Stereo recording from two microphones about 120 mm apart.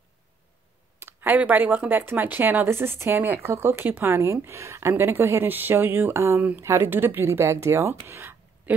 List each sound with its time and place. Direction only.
1.0 s speech: 15° right (ahead or behind)